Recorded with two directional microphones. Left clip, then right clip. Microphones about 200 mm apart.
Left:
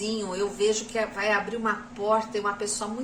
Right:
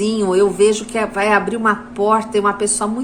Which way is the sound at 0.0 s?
55° right (ahead or behind).